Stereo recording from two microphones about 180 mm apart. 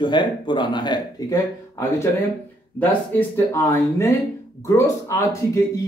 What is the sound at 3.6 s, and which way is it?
A man's voice, 15° left (ahead or behind).